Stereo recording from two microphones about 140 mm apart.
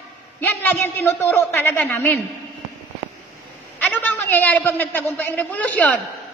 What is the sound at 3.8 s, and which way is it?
A man's voice, 15° left (ahead or behind).